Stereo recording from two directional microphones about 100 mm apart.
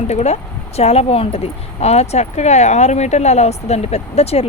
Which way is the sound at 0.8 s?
90° left.